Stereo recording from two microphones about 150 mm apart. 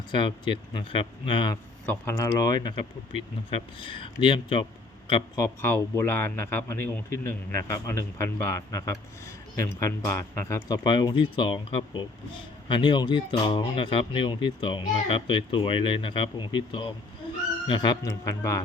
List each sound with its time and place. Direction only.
0.1 s speech: 30° left (ahead or behind)
1.9 s a man's voice: 20° left (ahead or behind); by 5.5 s 35° left (ahead or behind)
5.6 s a man's voice: 15° left (ahead or behind)
10.8 s a man's voice: 30° left (ahead or behind)